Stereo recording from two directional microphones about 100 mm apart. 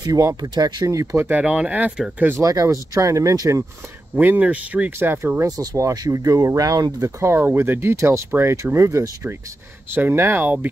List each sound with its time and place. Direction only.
0.0 s speech: 35° right (ahead or behind)
0.9 s speech: 25° right (ahead or behind)
1.4 s speech: 10° right (ahead or behind)
2.4 s speech: 35° right (ahead or behind)
4.2 s speech: 15° right (ahead or behind)